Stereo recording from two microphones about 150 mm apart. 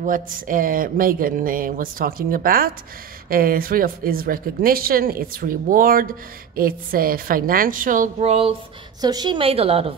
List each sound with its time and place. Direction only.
0.0 s speech: 65° right (ahead or behind); by 8.5 s 45° right (ahead or behind)
9.0 s a woman's voice: 25° right (ahead or behind)